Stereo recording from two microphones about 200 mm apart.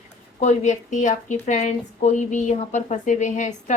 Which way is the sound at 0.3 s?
35° left (ahead or behind).